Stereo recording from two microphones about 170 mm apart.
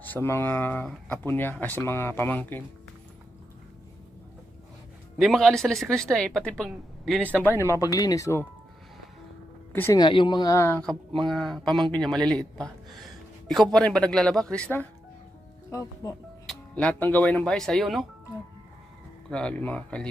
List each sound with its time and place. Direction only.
0.0 s speech: 10° left (ahead or behind)
5.1 s speech: centre (ahead or behind)
7.3 s speech: 15° left (ahead or behind)
9.7 s speech: 15° left (ahead or behind)
10.0 s speech: 30° left (ahead or behind); by 14.8 s 10° left (ahead or behind)
15.7 s speech: 20° left (ahead or behind)
16.5 s speech: 5° left (ahead or behind)
19.3 s speech: 5° left (ahead or behind)